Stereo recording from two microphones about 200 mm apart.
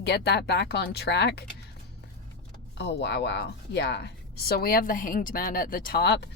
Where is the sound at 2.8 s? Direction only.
55° left (ahead or behind).